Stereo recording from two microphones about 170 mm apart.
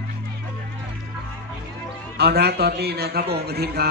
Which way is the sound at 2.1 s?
70° right (ahead or behind).